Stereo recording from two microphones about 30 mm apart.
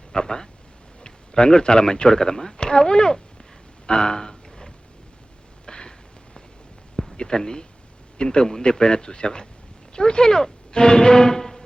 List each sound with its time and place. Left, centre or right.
0.1 s speech: left
3.8 s a sound: left
7.2 s speech: left